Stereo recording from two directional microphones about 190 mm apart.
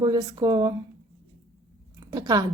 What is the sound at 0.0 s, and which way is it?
Speech, 20° right (ahead or behind).